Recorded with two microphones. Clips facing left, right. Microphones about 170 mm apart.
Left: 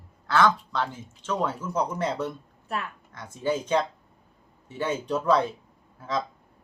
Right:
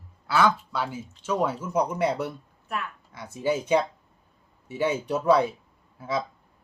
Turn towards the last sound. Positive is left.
turn(degrees=-10)  # may be behind; listen again after turning